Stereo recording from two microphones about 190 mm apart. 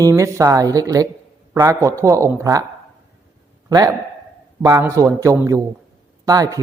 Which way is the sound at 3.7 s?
20° right (ahead or behind).